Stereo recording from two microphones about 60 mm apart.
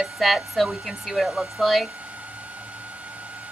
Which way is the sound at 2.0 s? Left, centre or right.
Right.